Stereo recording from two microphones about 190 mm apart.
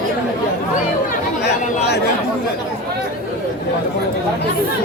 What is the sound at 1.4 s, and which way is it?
Speech, 60° left (ahead or behind).